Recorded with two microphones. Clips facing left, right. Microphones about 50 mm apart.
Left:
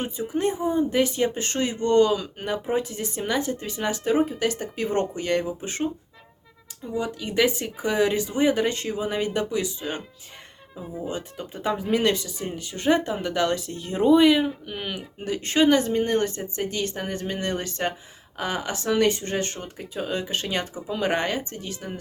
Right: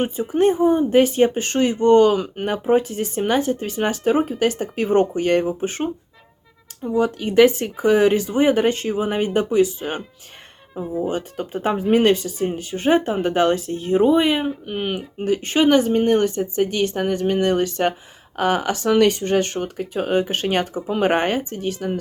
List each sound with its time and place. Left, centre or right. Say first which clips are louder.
0.0 s speech: right 7 dB; right
7.0 s speech: right 9 dB; right
11.0 s speech: right 4 dB; right
12.2 s speech: right 8 dB; right
13.9 s speech: right 1 dB; right
14.4 s speech: right 5 dB; right